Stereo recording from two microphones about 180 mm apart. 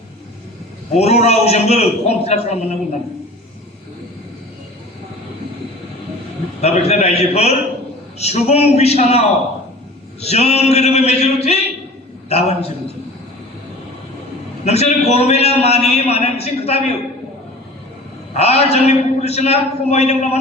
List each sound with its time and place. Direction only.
0.9 s a man's voice: 35° left (ahead or behind)
6.6 s a man's voice: 35° left (ahead or behind)
14.6 s a man's voice: 35° left (ahead or behind)
18.3 s a man's voice: 35° left (ahead or behind)